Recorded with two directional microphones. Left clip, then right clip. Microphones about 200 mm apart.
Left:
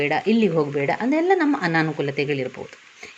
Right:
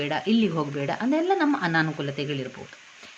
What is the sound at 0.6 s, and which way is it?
Speech, 10° left (ahead or behind).